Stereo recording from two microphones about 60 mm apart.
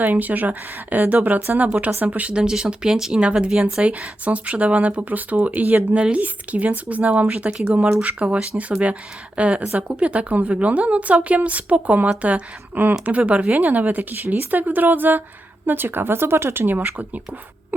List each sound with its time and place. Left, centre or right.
0.0 s speech: right; by 3.8 s centre
3.8 s speech: right